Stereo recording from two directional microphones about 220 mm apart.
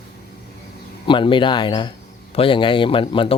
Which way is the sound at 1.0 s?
20° left (ahead or behind).